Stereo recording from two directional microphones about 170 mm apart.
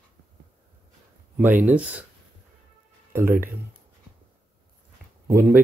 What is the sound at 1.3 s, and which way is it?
Speech, 10° right (ahead or behind).